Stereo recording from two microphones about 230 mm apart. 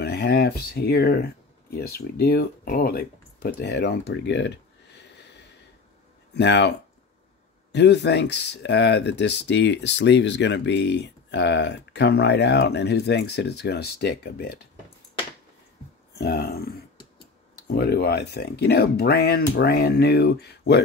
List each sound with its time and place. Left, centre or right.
0.0 s speech: left
6.3 s speech: left
16.2 s speech: left
17.6 s speech: left